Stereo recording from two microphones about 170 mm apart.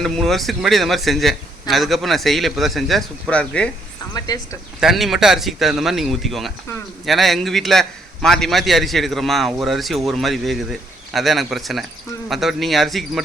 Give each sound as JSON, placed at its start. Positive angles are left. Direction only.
{"t": 0.0, "sound": "a man's voice", "side_deg": 0}
{"t": 4.1, "sound": "speech", "side_deg": 25}
{"t": 4.8, "sound": "a man's voice", "side_deg": 0}